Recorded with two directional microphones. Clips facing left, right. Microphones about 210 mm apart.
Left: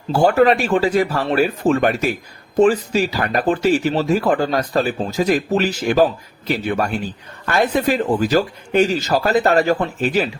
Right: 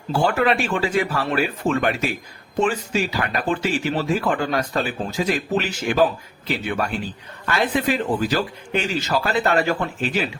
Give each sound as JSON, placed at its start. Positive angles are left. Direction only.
{"t": 0.1, "sound": "speech", "side_deg": 40}